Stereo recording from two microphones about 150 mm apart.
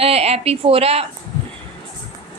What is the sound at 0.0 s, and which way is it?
A woman's voice, 40° right (ahead or behind).